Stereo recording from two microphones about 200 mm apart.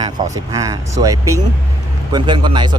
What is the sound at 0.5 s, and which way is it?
Speech, 15° right (ahead or behind).